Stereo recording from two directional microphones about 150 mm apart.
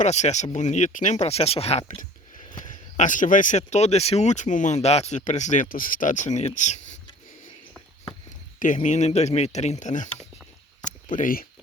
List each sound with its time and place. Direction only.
0.0 s speech: 50° left (ahead or behind)
3.0 s speech: 60° left (ahead or behind)
8.5 s speech: 60° left (ahead or behind)
11.2 s speech: 70° left (ahead or behind)